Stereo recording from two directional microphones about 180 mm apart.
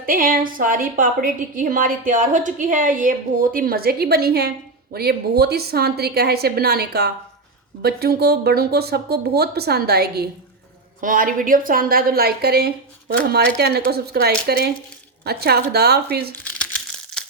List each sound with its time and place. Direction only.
0.0 s a woman's voice: 50° right (ahead or behind)
11.0 s a woman's voice: 50° right (ahead or behind)
16.4 s crumpling: 10° left (ahead or behind)